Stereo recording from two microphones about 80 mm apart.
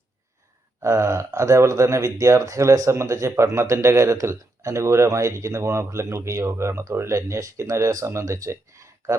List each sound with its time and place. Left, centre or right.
0.8 s speech: right